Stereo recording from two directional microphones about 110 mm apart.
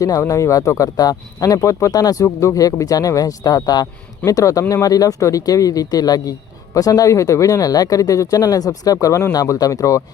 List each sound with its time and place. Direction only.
0.0 s speech: 30° left (ahead or behind)